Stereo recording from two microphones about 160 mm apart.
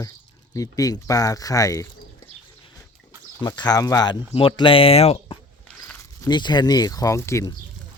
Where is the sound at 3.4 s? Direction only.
25° left (ahead or behind).